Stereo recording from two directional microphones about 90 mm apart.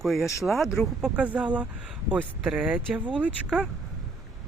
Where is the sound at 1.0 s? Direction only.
15° right (ahead or behind).